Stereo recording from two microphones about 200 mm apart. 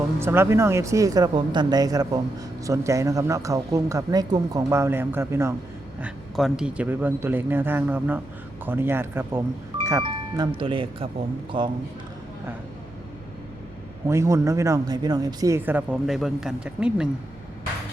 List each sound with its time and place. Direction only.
0.2 s speech: 10° right (ahead or behind)
14.1 s speech: 15° right (ahead or behind)